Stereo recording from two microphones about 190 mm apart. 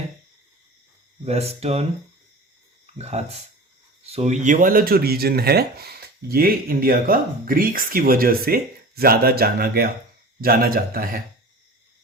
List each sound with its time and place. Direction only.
1.2 s speech: 35° right (ahead or behind)
2.8 s speech: 35° right (ahead or behind); by 11.2 s 50° right (ahead or behind)